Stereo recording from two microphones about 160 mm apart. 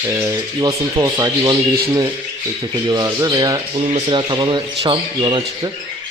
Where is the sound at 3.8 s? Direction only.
45° right (ahead or behind).